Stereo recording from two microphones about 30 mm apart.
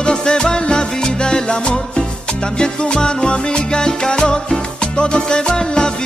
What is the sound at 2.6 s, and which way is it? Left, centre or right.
Music, left.